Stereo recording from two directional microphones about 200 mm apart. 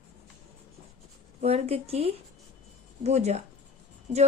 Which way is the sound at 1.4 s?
30° right (ahead or behind).